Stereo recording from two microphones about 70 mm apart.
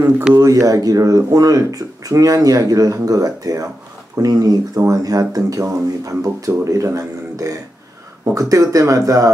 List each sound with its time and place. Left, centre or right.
0.3 s speech: right